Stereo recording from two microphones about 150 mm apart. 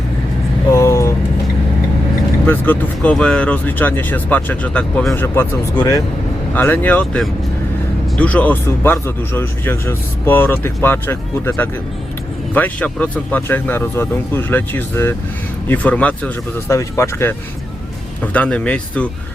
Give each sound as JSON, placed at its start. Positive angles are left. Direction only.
{"t": 0.7, "sound": "vehicle", "side_deg": 20}
{"t": 2.5, "sound": "speech", "side_deg": 10}
{"t": 18.2, "sound": "speech", "side_deg": 10}